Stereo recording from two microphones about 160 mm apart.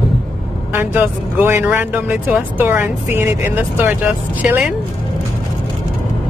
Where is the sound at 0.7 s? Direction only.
10° right (ahead or behind).